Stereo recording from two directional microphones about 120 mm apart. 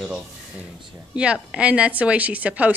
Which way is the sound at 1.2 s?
10° right (ahead or behind).